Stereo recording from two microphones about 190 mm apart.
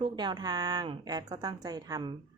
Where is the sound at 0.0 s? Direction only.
25° right (ahead or behind).